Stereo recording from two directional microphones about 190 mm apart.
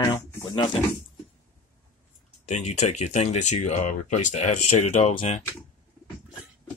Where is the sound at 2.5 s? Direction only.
35° left (ahead or behind).